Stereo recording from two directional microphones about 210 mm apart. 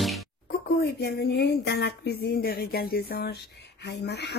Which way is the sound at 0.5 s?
50° left (ahead or behind).